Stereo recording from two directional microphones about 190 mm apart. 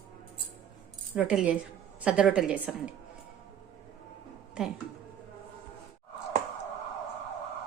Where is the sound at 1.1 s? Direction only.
5° right (ahead or behind).